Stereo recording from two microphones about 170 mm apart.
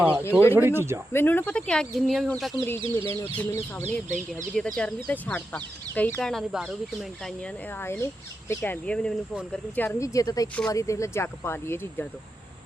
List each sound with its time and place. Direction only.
0.0 s speech: 10° right (ahead or behind)
1.1 s speech: 10° left (ahead or behind)
2.8 s speech: 30° right (ahead or behind)
3.2 s speech: 15° left (ahead or behind)
4.6 s speech: centre (ahead or behind)